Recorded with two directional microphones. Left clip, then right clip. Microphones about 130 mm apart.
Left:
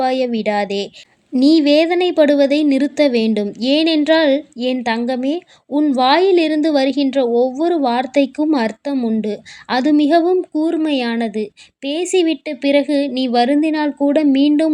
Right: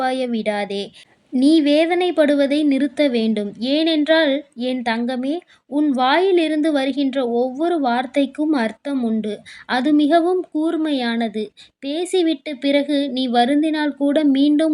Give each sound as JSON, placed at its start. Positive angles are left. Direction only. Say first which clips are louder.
{"t": 0.0, "sound": "a woman's voice", "louder": "left 4 dB", "side_deg": 25}